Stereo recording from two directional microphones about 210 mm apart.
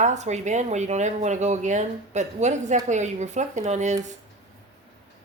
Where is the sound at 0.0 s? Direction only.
35° right (ahead or behind).